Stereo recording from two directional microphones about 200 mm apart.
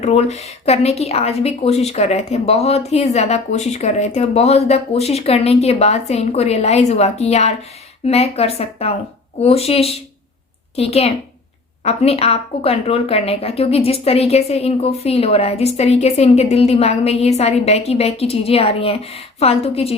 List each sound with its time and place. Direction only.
0.0 s speech: 35° left (ahead or behind)